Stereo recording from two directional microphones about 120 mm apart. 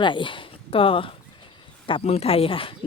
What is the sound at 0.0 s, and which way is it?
Speech, 40° left (ahead or behind).